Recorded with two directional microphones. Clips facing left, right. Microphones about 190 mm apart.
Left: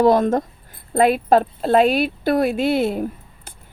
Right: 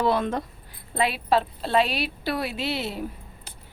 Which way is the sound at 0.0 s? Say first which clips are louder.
Left 8 dB; 45° left (ahead or behind).